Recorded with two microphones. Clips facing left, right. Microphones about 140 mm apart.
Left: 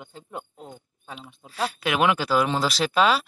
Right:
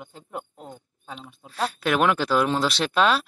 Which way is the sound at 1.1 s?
5° left (ahead or behind).